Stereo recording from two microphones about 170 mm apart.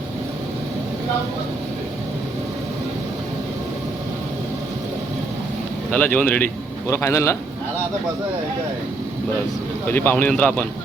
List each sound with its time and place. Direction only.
5.9 s speech: 10° left (ahead or behind)
9.8 s speech: 10° left (ahead or behind)